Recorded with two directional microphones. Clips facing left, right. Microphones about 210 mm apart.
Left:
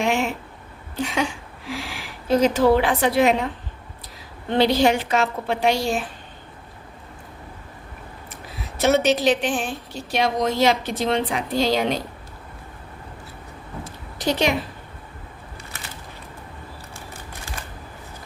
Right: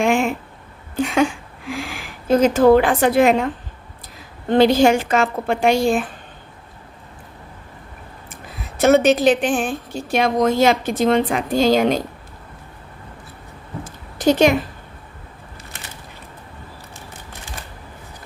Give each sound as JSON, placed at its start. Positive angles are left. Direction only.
{"t": 0.0, "sound": "a woman's voice", "side_deg": -50}
{"t": 8.8, "sound": "a woman's voice", "side_deg": -50}
{"t": 13.8, "sound": "a sound", "side_deg": -45}